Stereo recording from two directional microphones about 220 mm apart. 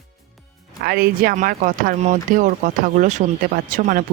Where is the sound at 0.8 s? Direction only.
45° right (ahead or behind).